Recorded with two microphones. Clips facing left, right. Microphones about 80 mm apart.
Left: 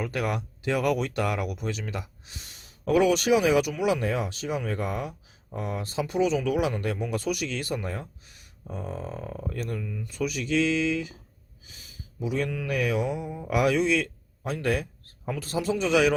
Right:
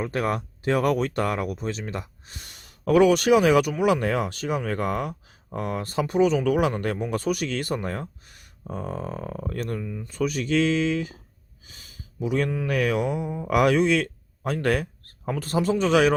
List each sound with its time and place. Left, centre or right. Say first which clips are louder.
0.0 s speech: right 3 dB; right
9.8 s speech: right 2 dB; right
10.1 s speech: right 3 dB; right
12.2 s speech: right 4 dB; right
12.5 s speech: right 4 dB; right
12.7 s speech: right 2 dB; right